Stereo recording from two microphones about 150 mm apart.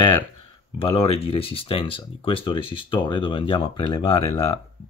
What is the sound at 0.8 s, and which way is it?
Speech, 40° left (ahead or behind).